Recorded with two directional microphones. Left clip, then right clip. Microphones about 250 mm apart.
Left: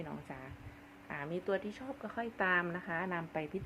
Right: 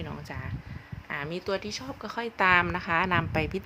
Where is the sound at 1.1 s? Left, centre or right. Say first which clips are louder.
Right 6 dB; right.